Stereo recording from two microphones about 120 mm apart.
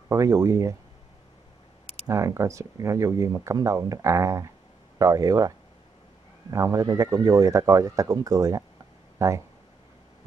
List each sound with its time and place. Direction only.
0.1 s speech: 30° right (ahead or behind)
2.0 s speech: 25° right (ahead or behind)
6.5 s speech: 30° right (ahead or behind)